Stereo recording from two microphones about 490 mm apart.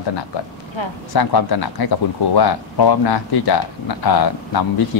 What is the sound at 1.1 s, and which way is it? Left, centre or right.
Speech, left.